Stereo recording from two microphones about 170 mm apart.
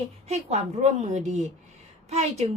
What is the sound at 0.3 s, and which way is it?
A woman's voice, 40° right (ahead or behind).